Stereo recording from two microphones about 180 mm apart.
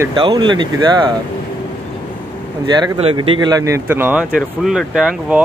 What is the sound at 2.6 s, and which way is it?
Speech, 25° right (ahead or behind).